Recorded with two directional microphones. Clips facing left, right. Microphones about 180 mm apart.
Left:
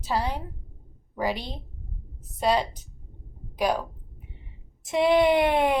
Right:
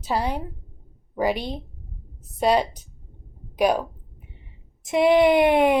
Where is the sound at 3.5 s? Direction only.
15° right (ahead or behind).